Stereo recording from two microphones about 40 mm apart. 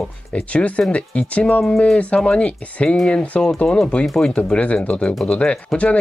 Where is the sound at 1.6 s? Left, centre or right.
Centre.